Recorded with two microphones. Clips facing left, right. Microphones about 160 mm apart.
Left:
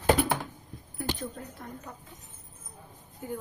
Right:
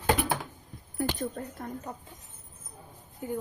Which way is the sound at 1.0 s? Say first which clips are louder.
Right 4 dB; 45° right (ahead or behind).